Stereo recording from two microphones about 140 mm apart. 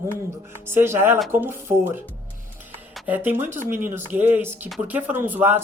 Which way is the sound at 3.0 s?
10° right (ahead or behind).